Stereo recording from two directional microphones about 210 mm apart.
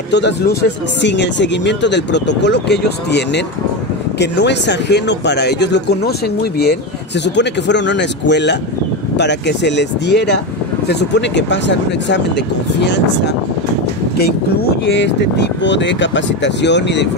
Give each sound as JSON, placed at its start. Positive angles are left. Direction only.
{"t": 0.1, "sound": "speech", "side_deg": 55}
{"t": 7.2, "sound": "speech", "side_deg": 55}
{"t": 14.9, "sound": "speech", "side_deg": 55}